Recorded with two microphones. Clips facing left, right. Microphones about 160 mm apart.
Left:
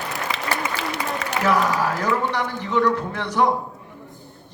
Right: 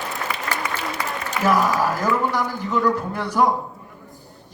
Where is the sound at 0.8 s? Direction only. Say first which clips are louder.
Left 1 dB; 80° left.